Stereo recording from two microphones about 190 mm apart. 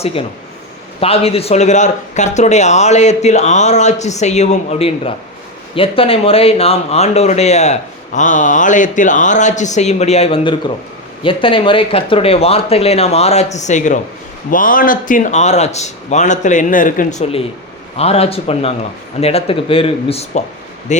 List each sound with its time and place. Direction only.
0.0 s speech: 30° left (ahead or behind)